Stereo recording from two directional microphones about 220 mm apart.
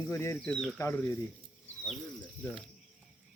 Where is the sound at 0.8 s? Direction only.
10° left (ahead or behind).